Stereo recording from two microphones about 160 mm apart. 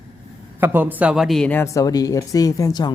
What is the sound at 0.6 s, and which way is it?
Speech, 10° right (ahead or behind).